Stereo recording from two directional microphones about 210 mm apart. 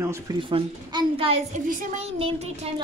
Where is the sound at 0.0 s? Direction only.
15° right (ahead or behind); by 2.7 s 30° right (ahead or behind).